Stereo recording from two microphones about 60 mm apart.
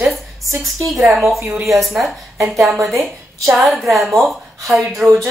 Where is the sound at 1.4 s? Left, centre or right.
Right.